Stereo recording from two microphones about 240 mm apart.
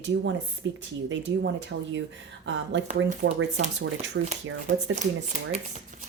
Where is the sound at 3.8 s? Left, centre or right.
Right.